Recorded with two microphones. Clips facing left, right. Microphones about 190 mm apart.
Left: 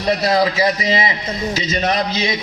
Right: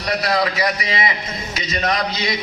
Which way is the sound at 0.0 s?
25° left (ahead or behind).